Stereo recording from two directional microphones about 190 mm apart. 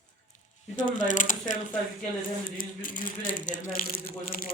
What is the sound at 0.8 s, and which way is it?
Speech, 40° left (ahead or behind).